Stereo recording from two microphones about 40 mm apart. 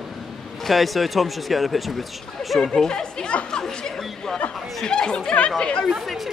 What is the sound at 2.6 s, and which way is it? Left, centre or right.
Speech, centre.